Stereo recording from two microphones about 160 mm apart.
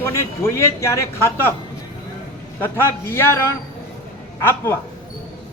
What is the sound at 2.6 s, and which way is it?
Speech, 15° left (ahead or behind).